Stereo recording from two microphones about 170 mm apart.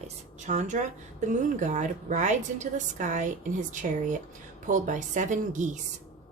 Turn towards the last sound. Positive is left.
turn(degrees=-45)  # may be behind; listen again after turning